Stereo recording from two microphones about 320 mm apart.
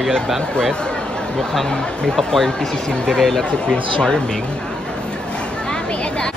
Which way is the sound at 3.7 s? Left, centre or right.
Centre.